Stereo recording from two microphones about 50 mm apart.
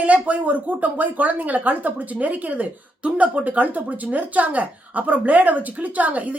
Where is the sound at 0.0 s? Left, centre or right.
Right.